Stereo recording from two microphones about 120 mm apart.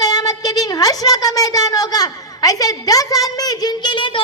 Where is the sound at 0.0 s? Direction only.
30° left (ahead or behind).